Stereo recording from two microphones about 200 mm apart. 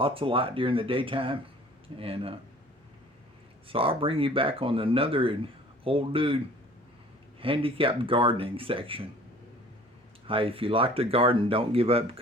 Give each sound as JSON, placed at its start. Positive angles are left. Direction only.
{"t": 0.0, "sound": "speech", "side_deg": -25}
{"t": 3.7, "sound": "speech", "side_deg": -25}
{"t": 10.2, "sound": "speech", "side_deg": -25}